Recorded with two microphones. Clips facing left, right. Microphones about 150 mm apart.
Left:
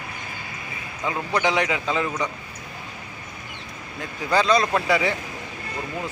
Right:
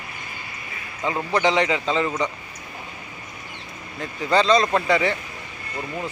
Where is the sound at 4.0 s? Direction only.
5° left (ahead or behind).